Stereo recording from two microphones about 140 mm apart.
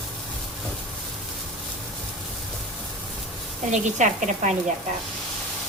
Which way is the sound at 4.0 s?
60° right (ahead or behind).